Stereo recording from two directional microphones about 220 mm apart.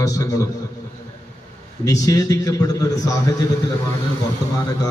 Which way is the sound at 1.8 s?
15° left (ahead or behind).